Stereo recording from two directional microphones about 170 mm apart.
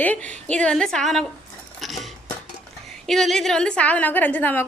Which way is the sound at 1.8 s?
Centre (ahead or behind).